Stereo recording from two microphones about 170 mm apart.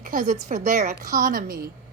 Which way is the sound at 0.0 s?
50° right (ahead or behind).